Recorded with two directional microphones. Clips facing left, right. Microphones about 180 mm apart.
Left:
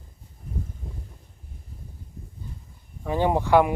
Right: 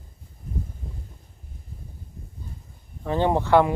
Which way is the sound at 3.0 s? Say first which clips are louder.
Right 1 dB; 10° left (ahead or behind).